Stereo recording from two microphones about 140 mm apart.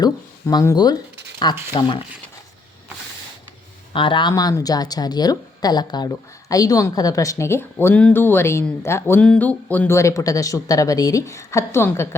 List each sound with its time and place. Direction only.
0.0 s speech: 25° left (ahead or behind)
3.9 s speech: 35° left (ahead or behind); by 12.0 s 20° left (ahead or behind)